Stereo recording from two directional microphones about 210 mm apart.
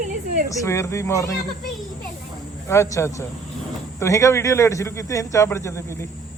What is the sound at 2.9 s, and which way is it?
Speech, 15° left (ahead or behind).